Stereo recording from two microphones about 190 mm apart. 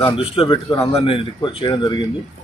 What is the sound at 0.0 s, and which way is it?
Speech, 25° left (ahead or behind).